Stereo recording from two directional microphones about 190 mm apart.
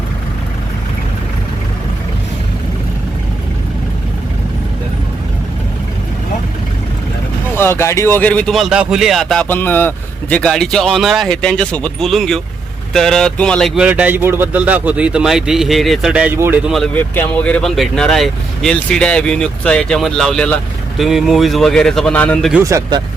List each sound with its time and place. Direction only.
7.5 s speech: 15° left (ahead or behind)
22.5 s speech: 15° right (ahead or behind)